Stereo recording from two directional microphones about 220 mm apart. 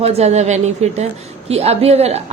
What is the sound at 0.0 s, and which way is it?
A woman's voice, 30° right (ahead or behind).